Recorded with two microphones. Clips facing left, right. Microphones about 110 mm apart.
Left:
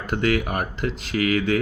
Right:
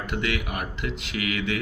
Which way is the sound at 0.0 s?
40° left (ahead or behind).